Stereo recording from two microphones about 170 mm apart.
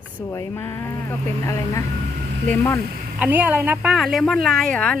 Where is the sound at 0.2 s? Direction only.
15° left (ahead or behind).